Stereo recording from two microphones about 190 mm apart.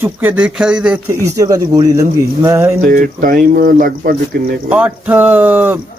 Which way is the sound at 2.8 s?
45° right (ahead or behind).